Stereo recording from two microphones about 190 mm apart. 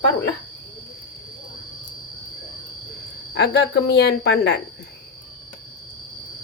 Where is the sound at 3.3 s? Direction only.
60° left (ahead or behind).